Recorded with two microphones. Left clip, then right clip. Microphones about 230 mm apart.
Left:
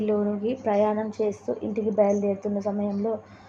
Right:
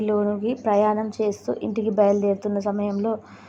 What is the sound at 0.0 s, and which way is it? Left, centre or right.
A woman's voice, centre.